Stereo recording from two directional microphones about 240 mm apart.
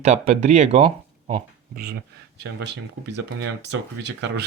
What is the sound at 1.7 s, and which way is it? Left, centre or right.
Speech, right.